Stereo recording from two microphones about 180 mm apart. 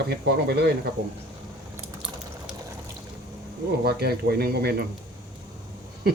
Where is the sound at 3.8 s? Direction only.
60° right (ahead or behind).